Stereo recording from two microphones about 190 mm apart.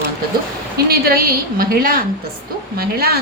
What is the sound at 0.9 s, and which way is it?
A woman's voice, 50° right (ahead or behind).